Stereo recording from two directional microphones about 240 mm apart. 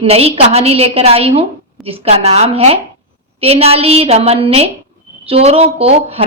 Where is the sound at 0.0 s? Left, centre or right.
Right.